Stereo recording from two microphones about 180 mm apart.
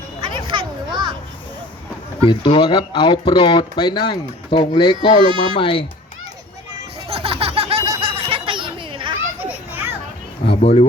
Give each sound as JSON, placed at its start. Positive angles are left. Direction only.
{"t": 0.3, "sound": "children playing", "side_deg": -25}
{"t": 2.2, "sound": "speech", "side_deg": 30}
{"t": 7.1, "sound": "a sound", "side_deg": -30}
{"t": 9.5, "sound": "children playing", "side_deg": -10}
{"t": 10.4, "sound": "speech", "side_deg": 35}